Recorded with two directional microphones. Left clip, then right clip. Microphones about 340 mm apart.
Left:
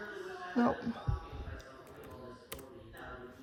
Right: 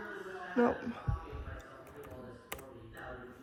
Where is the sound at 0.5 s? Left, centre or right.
Centre.